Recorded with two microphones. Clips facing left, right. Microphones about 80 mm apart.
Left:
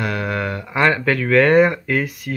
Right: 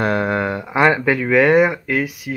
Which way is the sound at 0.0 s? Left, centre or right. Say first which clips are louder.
Right 4 dB; right.